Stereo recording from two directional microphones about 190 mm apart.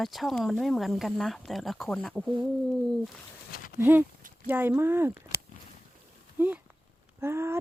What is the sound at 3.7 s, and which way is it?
Speech, 10° right (ahead or behind).